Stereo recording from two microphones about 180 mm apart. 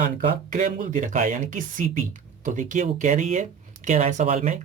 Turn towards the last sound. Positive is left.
turn(degrees=-40)  # may be behind; listen again after turning